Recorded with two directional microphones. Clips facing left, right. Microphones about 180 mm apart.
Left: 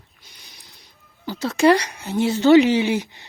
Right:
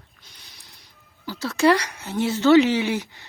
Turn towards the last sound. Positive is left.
turn(degrees=20)  # may be behind; listen again after turning